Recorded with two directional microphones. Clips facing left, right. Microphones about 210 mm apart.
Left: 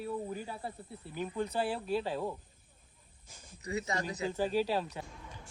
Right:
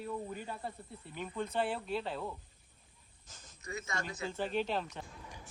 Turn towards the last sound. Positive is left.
turn(degrees=10)  # may be behind; listen again after turning